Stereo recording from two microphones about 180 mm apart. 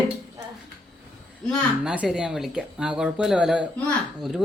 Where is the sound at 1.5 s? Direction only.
5° right (ahead or behind).